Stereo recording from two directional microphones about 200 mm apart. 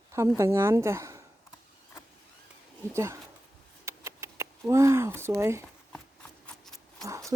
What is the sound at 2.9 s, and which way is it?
Speech, 15° right (ahead or behind).